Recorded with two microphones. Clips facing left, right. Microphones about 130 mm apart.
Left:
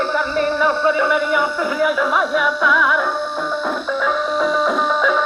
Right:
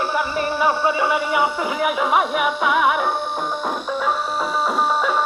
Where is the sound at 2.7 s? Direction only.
60° right (ahead or behind).